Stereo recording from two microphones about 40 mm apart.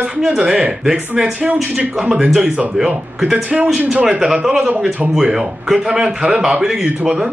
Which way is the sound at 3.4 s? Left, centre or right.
Right.